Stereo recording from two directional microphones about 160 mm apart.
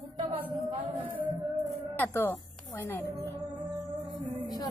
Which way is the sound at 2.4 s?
Centre (ahead or behind).